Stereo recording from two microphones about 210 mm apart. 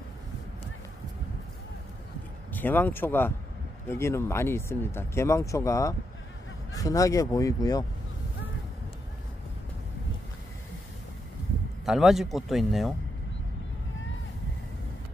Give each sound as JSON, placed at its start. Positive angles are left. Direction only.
{"t": 2.5, "sound": "speech", "side_deg": 10}
{"t": 11.8, "sound": "speech", "side_deg": 0}